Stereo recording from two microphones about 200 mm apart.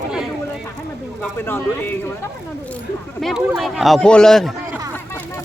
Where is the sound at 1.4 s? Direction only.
10° left (ahead or behind).